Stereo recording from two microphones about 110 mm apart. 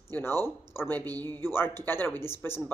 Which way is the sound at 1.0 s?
35° right (ahead or behind).